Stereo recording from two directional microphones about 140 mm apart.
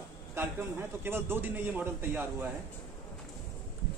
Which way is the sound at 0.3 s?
15° right (ahead or behind).